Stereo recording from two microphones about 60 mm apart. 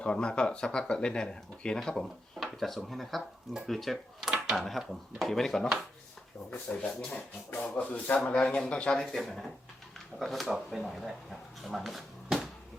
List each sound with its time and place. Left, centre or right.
0.0 s speech: centre
4.2 s a sound: centre
4.9 s speech: centre
6.5 s speech: left
9.0 s speech: centre